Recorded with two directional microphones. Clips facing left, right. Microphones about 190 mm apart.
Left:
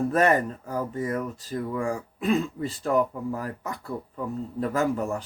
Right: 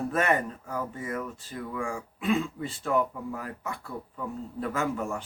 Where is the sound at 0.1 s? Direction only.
35° left (ahead or behind).